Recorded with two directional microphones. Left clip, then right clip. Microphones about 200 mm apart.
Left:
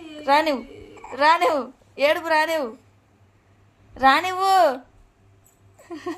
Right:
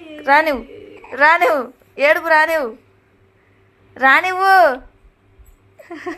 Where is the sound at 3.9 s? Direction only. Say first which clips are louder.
Right 5 dB; 5° right (ahead or behind).